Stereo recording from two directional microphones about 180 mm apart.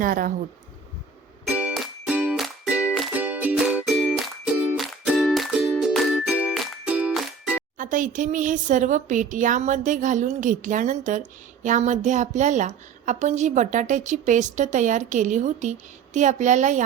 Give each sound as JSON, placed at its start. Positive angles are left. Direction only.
{"t": 0.0, "sound": "a woman's voice", "side_deg": -50}
{"t": 1.5, "sound": "music", "side_deg": -5}
{"t": 7.8, "sound": "a woman's voice", "side_deg": -45}